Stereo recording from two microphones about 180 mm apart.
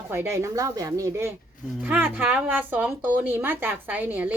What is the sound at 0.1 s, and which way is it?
A woman's voice, 15° right (ahead or behind).